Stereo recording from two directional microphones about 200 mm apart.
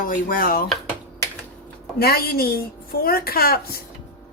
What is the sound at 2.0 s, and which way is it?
Speech, 50° left (ahead or behind).